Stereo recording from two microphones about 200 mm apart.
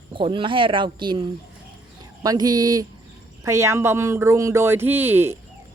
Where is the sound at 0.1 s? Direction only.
25° right (ahead or behind).